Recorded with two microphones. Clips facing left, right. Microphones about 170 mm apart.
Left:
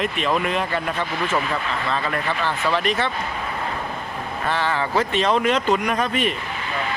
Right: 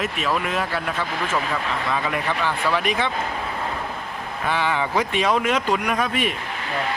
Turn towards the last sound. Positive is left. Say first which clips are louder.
# left 1 dB
turn(degrees=-5)  # may be behind; listen again after turning